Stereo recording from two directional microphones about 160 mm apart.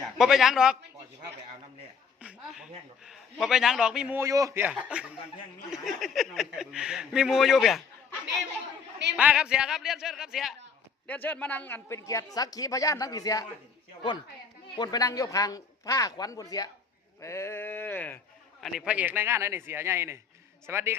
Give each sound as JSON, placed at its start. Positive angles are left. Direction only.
{"t": 0.2, "sound": "speech", "side_deg": 0}
{"t": 2.2, "sound": "a sound", "side_deg": -5}
{"t": 3.1, "sound": "a man's voice", "side_deg": 0}
{"t": 4.2, "sound": "a man's voice", "side_deg": -20}
{"t": 9.1, "sound": "speech", "side_deg": -5}
{"t": 11.0, "sound": "a man's voice", "side_deg": 10}
{"t": 14.8, "sound": "a man's voice", "side_deg": 25}
{"t": 17.2, "sound": "a sound", "side_deg": 15}
{"t": 18.6, "sound": "a man's voice", "side_deg": -5}